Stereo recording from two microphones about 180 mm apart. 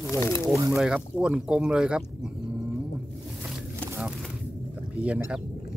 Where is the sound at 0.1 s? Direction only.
15° left (ahead or behind).